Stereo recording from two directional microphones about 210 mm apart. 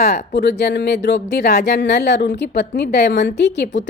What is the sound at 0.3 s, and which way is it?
Speech, 55° left (ahead or behind).